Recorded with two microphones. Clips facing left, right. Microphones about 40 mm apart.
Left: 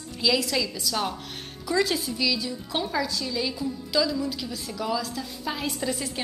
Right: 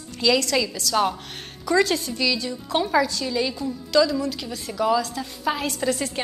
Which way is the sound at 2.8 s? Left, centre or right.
Right.